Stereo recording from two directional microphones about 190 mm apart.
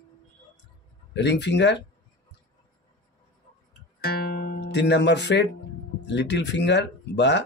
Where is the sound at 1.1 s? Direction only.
65° left (ahead or behind).